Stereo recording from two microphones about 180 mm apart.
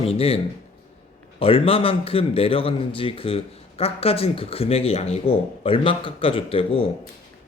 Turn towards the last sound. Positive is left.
turn(degrees=30)  # may be behind; listen again after turning